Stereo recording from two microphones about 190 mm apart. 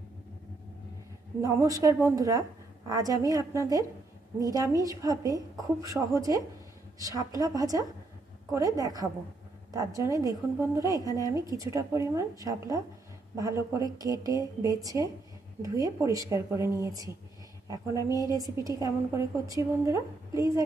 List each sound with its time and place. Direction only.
1.4 s a woman's voice: 15° right (ahead or behind)
17.9 s a woman's voice: 20° left (ahead or behind)
18.3 s a woman's voice: 20° right (ahead or behind)